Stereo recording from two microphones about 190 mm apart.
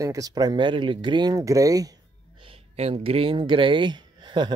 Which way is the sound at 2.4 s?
30° right (ahead or behind).